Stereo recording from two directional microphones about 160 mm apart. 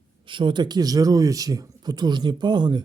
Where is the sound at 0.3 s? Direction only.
30° right (ahead or behind).